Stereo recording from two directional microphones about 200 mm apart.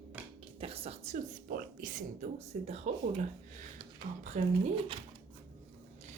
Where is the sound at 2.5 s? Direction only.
35° right (ahead or behind).